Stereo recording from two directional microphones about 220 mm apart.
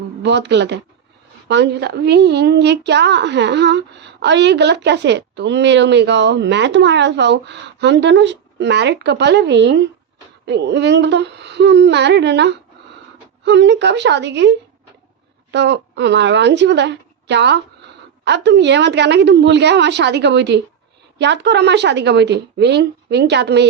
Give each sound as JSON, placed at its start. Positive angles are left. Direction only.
{"t": 0.2, "sound": "speech", "side_deg": -50}
{"t": 15.5, "sound": "speech", "side_deg": -50}